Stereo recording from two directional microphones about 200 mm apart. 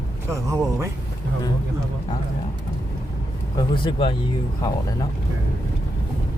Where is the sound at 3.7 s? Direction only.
25° left (ahead or behind).